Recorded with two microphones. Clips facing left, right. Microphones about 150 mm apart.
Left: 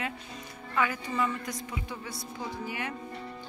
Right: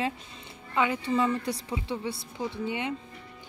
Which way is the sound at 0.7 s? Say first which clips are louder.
Right 4 dB; 25° right (ahead or behind).